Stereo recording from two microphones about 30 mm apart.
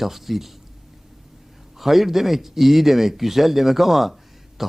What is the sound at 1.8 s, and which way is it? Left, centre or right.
A man's voice, centre.